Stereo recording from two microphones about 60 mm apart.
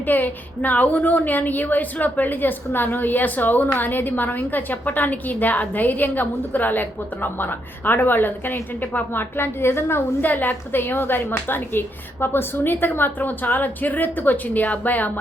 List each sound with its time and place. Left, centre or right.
0.1 s a woman's voice: left
10.2 s a woman's voice: left